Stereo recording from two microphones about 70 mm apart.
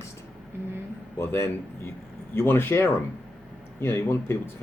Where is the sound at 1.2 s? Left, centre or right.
Left.